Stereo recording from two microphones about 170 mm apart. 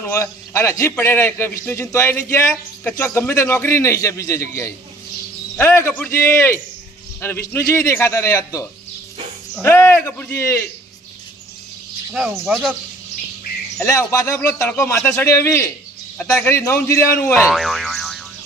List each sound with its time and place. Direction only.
0.0 s a man's voice: 15° left (ahead or behind)
12.1 s speech: centre (ahead or behind)
13.8 s a man's voice: 20° left (ahead or behind)
17.4 s boing: centre (ahead or behind)